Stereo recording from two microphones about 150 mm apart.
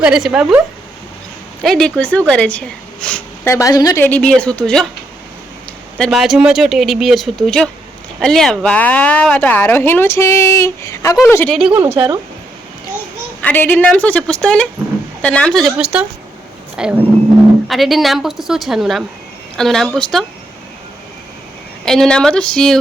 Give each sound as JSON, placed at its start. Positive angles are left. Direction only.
{"t": 0.0, "sound": "speech", "side_deg": -5}
{"t": 1.6, "sound": "a woman's voice", "side_deg": 5}
{"t": 3.4, "sound": "a woman's voice", "side_deg": 20}
{"t": 4.0, "sound": "a woman's voice", "side_deg": 10}
{"t": 6.0, "sound": "a woman's voice", "side_deg": 0}
{"t": 11.9, "sound": "speech", "side_deg": -20}
{"t": 13.4, "sound": "a woman's voice", "side_deg": 10}
{"t": 15.8, "sound": "speech", "side_deg": -10}
{"t": 21.8, "sound": "speech", "side_deg": 5}